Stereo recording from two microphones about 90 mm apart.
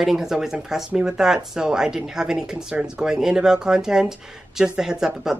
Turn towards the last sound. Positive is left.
turn(degrees=-5)  # may be behind; listen again after turning